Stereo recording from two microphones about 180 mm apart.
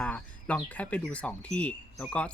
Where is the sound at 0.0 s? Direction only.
5° left (ahead or behind).